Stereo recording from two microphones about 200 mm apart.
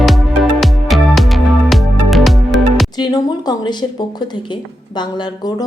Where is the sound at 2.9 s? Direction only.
20° left (ahead or behind).